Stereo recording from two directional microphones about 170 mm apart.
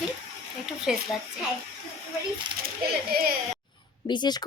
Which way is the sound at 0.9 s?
Centre (ahead or behind).